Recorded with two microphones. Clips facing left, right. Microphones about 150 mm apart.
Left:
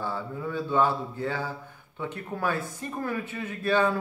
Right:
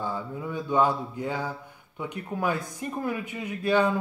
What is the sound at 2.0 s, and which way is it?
Speech, 15° right (ahead or behind).